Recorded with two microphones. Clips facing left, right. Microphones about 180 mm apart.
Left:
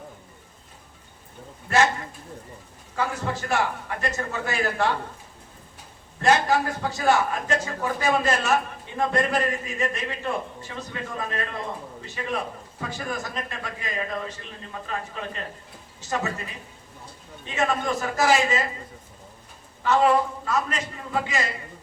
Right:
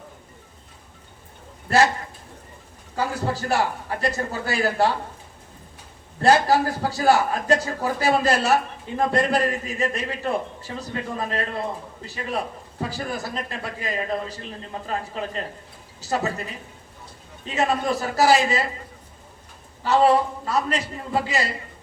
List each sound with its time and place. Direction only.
1.7 s a man's voice: 35° right (ahead or behind)
2.9 s a man's voice: 35° right (ahead or behind)
6.1 s a man's voice: 35° right (ahead or behind)
17.4 s a man's voice: 35° right (ahead or behind)
19.8 s a man's voice: 35° right (ahead or behind)